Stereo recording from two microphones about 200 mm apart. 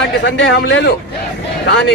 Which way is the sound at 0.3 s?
60° left (ahead or behind).